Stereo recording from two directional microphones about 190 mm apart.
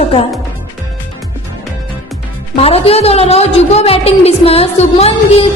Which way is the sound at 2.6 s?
30° left (ahead or behind).